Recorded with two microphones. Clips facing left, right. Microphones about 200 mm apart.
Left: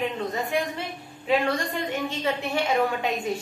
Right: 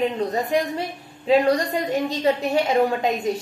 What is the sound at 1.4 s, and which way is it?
Speech, 40° right (ahead or behind).